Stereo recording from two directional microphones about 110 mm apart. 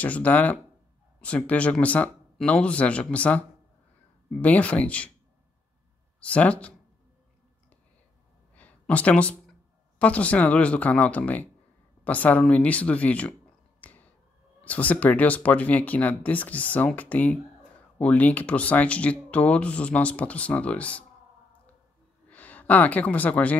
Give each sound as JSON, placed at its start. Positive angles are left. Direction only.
{"t": 0.0, "sound": "speech", "side_deg": 15}
{"t": 6.2, "sound": "speech", "side_deg": 10}
{"t": 8.5, "sound": "a sound", "side_deg": 15}
{"t": 9.9, "sound": "speech", "side_deg": 10}
{"t": 13.7, "sound": "a sound", "side_deg": 15}
{"t": 14.6, "sound": "speech", "side_deg": 15}
{"t": 22.3, "sound": "speech", "side_deg": 15}